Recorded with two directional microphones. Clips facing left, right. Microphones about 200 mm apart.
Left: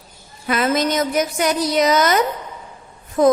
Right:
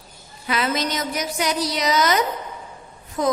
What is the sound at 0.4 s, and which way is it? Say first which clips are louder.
A woman's voice: left 5 dB; 50° left (ahead or behind).